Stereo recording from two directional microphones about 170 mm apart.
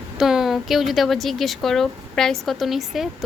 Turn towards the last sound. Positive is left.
turn(degrees=0)  # may be behind; listen again after turning